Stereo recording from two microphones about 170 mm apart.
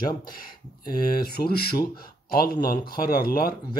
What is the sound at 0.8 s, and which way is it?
Speech, 60° left (ahead or behind).